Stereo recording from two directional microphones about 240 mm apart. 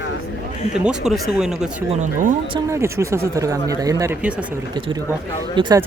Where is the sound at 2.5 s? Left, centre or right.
Centre.